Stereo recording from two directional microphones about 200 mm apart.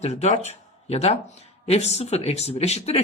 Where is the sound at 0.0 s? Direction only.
35° left (ahead or behind).